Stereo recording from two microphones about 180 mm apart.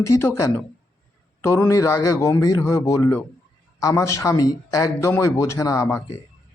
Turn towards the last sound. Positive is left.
turn(degrees=20)  # may be behind; listen again after turning